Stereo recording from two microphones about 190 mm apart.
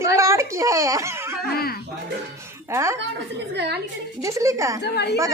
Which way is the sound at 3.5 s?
60° right (ahead or behind).